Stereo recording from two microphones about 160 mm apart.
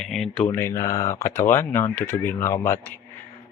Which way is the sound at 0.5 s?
15° left (ahead or behind).